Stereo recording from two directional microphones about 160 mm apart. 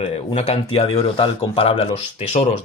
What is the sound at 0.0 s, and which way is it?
Speech, 40° left (ahead or behind).